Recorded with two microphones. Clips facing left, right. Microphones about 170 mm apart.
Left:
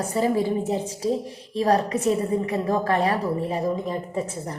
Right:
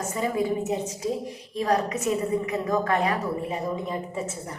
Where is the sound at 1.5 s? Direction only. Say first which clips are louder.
Left 4 dB; 30° left (ahead or behind).